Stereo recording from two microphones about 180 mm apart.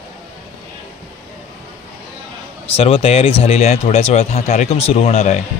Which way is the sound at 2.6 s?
30° left (ahead or behind).